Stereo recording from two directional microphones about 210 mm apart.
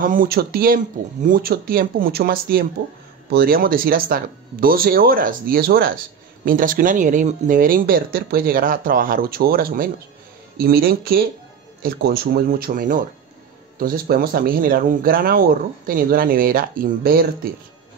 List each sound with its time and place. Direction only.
0.0 s speech: 40° right (ahead or behind)